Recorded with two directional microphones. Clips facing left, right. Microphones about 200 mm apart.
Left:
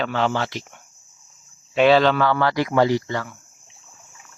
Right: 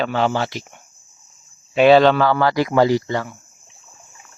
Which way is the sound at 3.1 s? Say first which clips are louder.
Right 4 dB; 20° right (ahead or behind).